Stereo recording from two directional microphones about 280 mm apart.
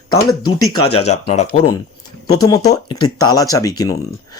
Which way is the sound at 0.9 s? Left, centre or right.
Left.